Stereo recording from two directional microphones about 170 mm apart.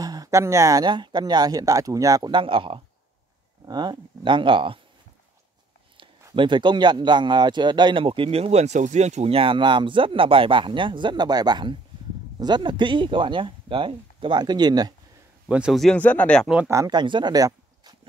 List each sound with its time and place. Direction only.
0.0 s speech: 20° right (ahead or behind)
6.3 s speech: 30° right (ahead or behind)
15.4 s speech: 5° right (ahead or behind)
16.5 s speech: 15° right (ahead or behind)